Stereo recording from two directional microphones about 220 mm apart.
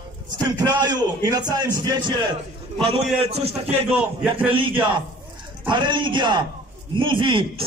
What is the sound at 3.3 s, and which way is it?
A man's voice, 30° right (ahead or behind).